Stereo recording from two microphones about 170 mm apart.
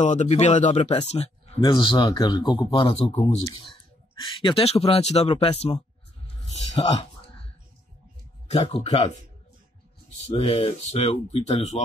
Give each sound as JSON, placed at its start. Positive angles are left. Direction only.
{"t": 0.0, "sound": "speech", "side_deg": 45}
{"t": 1.6, "sound": "speech", "side_deg": 25}
{"t": 3.1, "sound": "speech", "side_deg": 40}
{"t": 4.2, "sound": "speech", "side_deg": 30}
{"t": 8.5, "sound": "speech", "side_deg": 35}
{"t": 10.3, "sound": "speech", "side_deg": 30}